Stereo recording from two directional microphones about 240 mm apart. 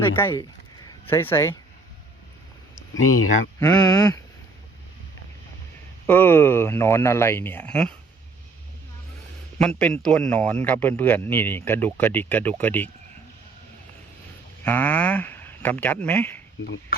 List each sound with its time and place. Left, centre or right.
0.0 s a man's voice: centre
3.6 s a man's voice: centre
6.1 s a man's voice: centre
9.6 s a man's voice: centre
14.6 s speech: centre